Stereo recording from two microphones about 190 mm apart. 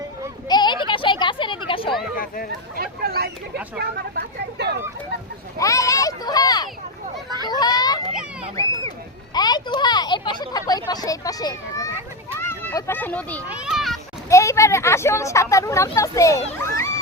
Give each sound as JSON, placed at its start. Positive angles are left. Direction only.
{"t": 0.4, "sound": "a sound", "side_deg": 20}
{"t": 2.1, "sound": "speech", "side_deg": 50}
{"t": 2.7, "sound": "speech", "side_deg": -50}
{"t": 5.5, "sound": "speech", "side_deg": 15}
{"t": 9.3, "sound": "speech", "side_deg": 20}
{"t": 13.5, "sound": "a child's voice", "side_deg": -5}
{"t": 14.3, "sound": "speech", "side_deg": 15}